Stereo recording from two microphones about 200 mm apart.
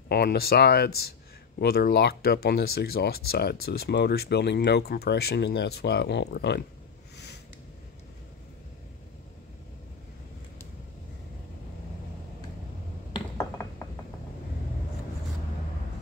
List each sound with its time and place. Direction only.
0.1 s speech: 55° left (ahead or behind)
13.1 s mechanisms: 15° left (ahead or behind)